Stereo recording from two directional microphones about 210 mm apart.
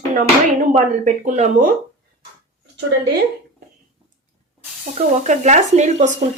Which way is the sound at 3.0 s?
50° right (ahead or behind).